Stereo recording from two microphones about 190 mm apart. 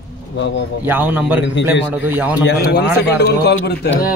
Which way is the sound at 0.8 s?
10° right (ahead or behind).